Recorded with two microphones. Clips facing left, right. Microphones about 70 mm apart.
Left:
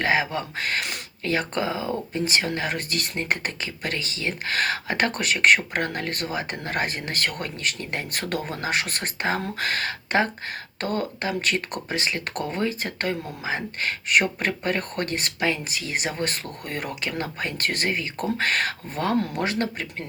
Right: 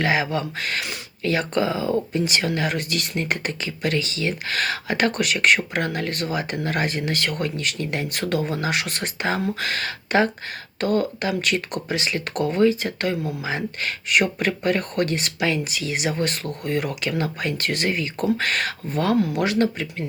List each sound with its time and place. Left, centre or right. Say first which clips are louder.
0.0 s speech: right 1 dB; left